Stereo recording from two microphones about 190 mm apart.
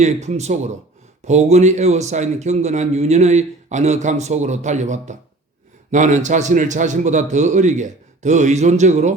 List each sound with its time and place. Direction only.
0.0 s a man's voice: 35° right (ahead or behind)